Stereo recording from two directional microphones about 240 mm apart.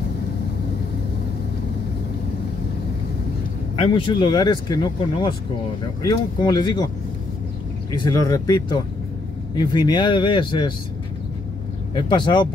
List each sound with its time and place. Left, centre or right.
3.8 s speech: centre
7.9 s speech: centre
11.9 s speech: centre